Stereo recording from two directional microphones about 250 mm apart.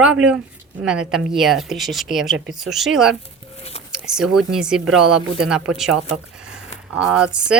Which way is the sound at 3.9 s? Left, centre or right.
Centre.